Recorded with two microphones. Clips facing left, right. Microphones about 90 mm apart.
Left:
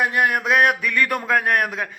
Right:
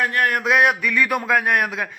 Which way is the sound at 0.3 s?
Centre (ahead or behind).